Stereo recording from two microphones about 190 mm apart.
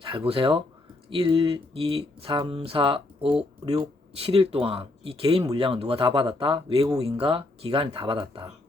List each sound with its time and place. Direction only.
0.3 s speech: 25° right (ahead or behind)